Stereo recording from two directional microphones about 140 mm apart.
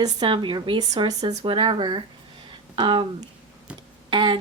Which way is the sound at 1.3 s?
45° right (ahead or behind).